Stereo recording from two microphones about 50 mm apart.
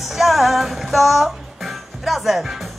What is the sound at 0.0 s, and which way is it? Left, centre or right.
Music, centre.